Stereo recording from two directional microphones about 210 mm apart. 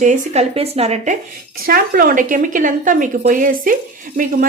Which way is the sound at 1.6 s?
45° right (ahead or behind).